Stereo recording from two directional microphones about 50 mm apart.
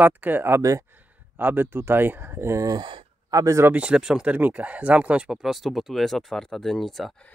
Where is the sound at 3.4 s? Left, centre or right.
Right.